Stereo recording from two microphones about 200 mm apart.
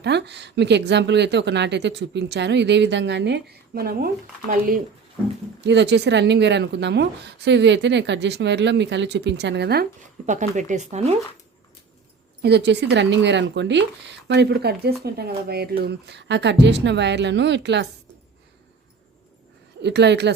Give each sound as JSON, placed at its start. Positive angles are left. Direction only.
{"t": 0.0, "sound": "speech", "side_deg": -60}
{"t": 5.6, "sound": "speech", "side_deg": -60}
{"t": 10.2, "sound": "speech", "side_deg": -35}
{"t": 12.4, "sound": "speech", "side_deg": -55}
{"t": 19.8, "sound": "speech", "side_deg": -60}